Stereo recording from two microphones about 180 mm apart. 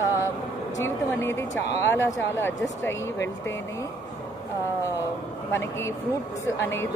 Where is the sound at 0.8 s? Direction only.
15° left (ahead or behind).